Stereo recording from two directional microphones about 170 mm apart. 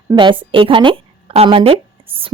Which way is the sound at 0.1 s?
30° right (ahead or behind).